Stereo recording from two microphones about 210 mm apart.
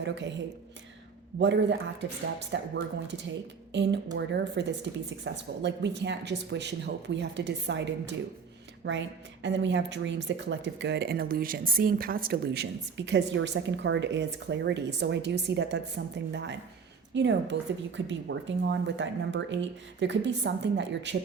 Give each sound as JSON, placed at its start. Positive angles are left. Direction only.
{"t": 0.0, "sound": "a woman's voice", "side_deg": -55}
{"t": 1.4, "sound": "a woman's voice", "side_deg": -55}